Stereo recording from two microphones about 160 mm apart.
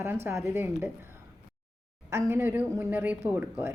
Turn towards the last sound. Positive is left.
turn(degrees=-10)  # may be behind; listen again after turning